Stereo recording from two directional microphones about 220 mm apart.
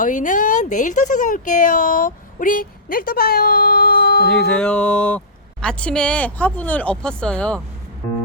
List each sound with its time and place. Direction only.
0.0 s speech: 35° left (ahead or behind)
4.5 s speech: 5° left (ahead or behind)